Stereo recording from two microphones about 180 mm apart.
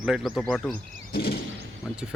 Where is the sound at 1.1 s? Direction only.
60° left (ahead or behind).